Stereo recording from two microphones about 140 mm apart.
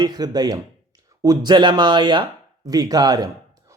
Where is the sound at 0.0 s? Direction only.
30° right (ahead or behind).